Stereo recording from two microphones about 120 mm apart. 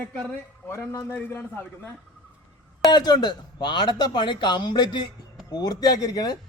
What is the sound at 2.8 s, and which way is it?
Speech, 35° left (ahead or behind).